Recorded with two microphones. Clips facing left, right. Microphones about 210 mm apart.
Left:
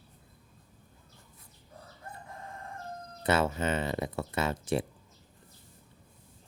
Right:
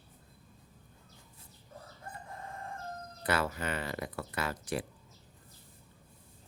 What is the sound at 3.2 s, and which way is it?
Speech, 25° left (ahead or behind).